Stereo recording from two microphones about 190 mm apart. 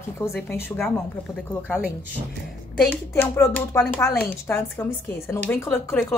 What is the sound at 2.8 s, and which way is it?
Speech, 10° left (ahead or behind).